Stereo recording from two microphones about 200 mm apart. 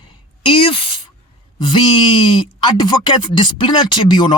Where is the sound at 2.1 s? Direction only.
25° left (ahead or behind).